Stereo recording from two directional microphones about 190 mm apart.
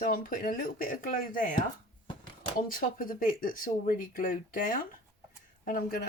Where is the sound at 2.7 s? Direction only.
45° left (ahead or behind).